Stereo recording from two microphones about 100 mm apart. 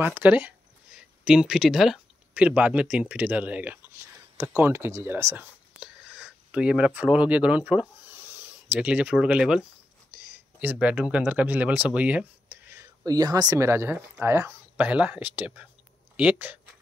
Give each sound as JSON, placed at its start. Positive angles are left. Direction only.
{"t": 0.0, "sound": "speech", "side_deg": -20}
{"t": 2.3, "sound": "speech", "side_deg": -15}
{"t": 5.8, "sound": "a sound", "side_deg": -10}
{"t": 10.1, "sound": "speech", "side_deg": -15}
{"t": 13.0, "sound": "speech", "side_deg": -40}
{"t": 13.7, "sound": "speech", "side_deg": -25}
{"t": 14.9, "sound": "speech", "side_deg": -10}